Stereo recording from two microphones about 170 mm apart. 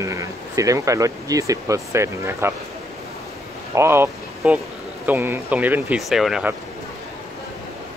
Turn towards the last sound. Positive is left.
turn(degrees=-5)  # may be behind; listen again after turning